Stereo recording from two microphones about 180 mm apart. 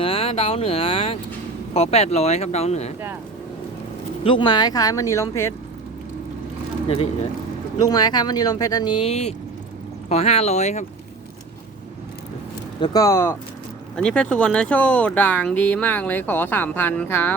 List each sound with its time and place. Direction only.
0.0 s speech: 30° left (ahead or behind)
4.2 s speech: 30° left (ahead or behind)
6.8 s speech: 30° left (ahead or behind)
7.8 s speech: 20° left (ahead or behind); by 10.8 s 40° left (ahead or behind)
12.8 s speech: 20° left (ahead or behind)
13.9 s speech: 5° left (ahead or behind)